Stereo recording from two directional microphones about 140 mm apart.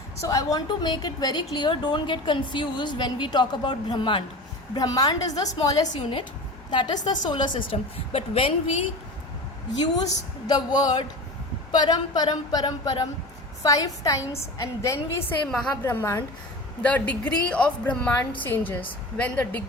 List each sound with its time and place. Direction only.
0.2 s a woman's voice: 25° left (ahead or behind)
6.0 s a woman's voice: 40° left (ahead or behind)
7.7 s a woman's voice: 45° left (ahead or behind)
10.4 s speech: 30° left (ahead or behind)
15.4 s a woman's voice: 5° left (ahead or behind)
15.7 s speech: 15° left (ahead or behind)